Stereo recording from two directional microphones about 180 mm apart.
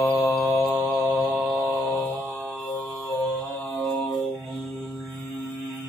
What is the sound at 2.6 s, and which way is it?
Mantra, 10° left (ahead or behind).